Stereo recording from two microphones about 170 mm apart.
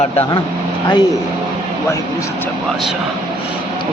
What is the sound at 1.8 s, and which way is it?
Speech, 20° left (ahead or behind).